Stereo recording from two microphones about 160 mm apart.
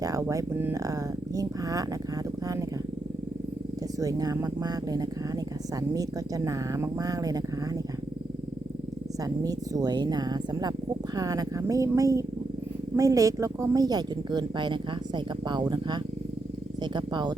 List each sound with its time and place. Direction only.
0.0 s speech: 20° right (ahead or behind)
4.0 s speech: 20° right (ahead or behind)
9.4 s speech: 20° right (ahead or behind)